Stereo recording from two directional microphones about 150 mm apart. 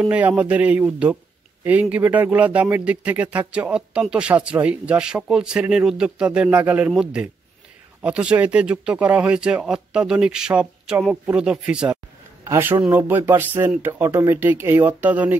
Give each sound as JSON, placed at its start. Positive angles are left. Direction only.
{"t": 0.0, "sound": "a man's voice", "side_deg": -10}